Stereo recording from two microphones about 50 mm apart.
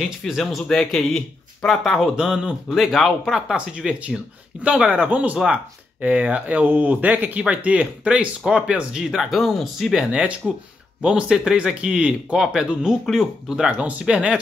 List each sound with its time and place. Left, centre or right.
0.3 s speech: centre
2.1 s speech: centre
2.7 s speech: centre
3.1 s speech: centre
5.4 s speech: centre
6.0 s speech: right
9.0 s speech: centre
9.9 s speech: right
13.7 s speech: right